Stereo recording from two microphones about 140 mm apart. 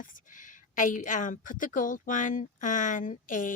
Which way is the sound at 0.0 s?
70° left (ahead or behind).